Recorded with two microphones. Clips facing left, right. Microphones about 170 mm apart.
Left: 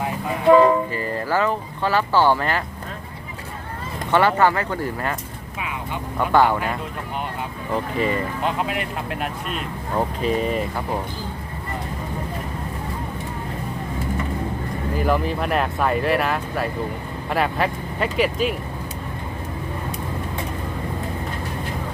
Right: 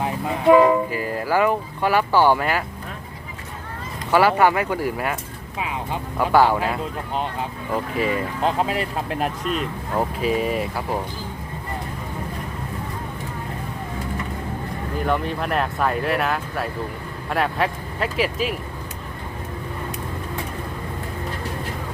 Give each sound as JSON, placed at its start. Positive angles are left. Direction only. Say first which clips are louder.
{"t": 0.4, "sound": "speech", "louder": "even", "side_deg": -5}
{"t": 4.1, "sound": "speech", "louder": "right 1 dB", "side_deg": -10}
{"t": 5.5, "sound": "speech", "louder": "right 2 dB", "side_deg": -30}
{"t": 6.1, "sound": "speech", "louder": "right 1 dB", "side_deg": -10}
{"t": 7.7, "sound": "speech", "louder": "left 1 dB", "side_deg": -5}
{"t": 8.4, "sound": "speech", "louder": "right 5 dB", "side_deg": -35}
{"t": 9.5, "sound": "speech", "louder": "right 2 dB", "side_deg": -5}
{"t": 14.9, "sound": "speech", "louder": "left 2 dB", "side_deg": 0}